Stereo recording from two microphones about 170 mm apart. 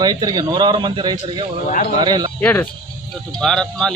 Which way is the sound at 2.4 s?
10° left (ahead or behind).